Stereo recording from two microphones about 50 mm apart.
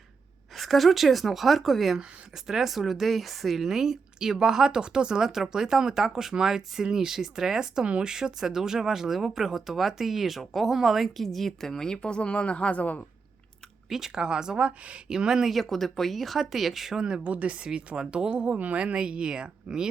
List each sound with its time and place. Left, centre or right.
0.5 s speech: centre; by 13.1 s left
13.9 s speech: centre
15.5 s speech: centre
17.2 s speech: right